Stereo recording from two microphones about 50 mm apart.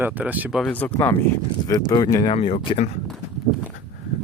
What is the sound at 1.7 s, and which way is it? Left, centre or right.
Speech, left.